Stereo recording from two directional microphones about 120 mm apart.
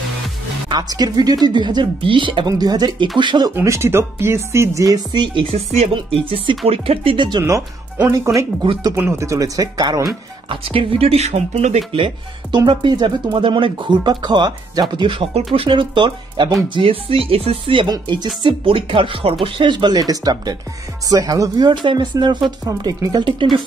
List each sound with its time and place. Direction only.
0.7 s speech: 35° right (ahead or behind)
3.5 s speech: 25° right (ahead or behind); by 5.5 s 40° right (ahead or behind)
5.5 s speech: 60° right (ahead or behind); by 7.4 s 40° right (ahead or behind)
8.9 s speech: 20° right (ahead or behind)
10.5 s speech: 45° right (ahead or behind)